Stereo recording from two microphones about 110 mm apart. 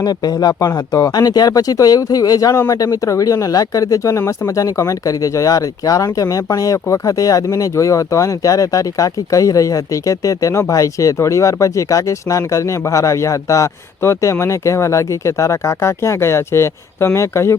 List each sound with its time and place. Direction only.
0.0 s speech: 35° left (ahead or behind)